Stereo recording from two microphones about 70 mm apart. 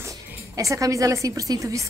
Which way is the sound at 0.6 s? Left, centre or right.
Right.